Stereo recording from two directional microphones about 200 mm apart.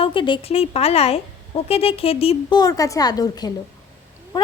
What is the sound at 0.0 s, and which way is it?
A woman's voice, 25° left (ahead or behind).